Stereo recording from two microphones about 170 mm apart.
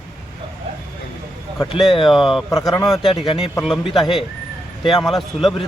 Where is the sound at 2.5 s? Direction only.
20° left (ahead or behind).